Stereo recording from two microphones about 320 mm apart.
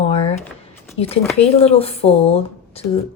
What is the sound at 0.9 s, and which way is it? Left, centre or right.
Speech, centre.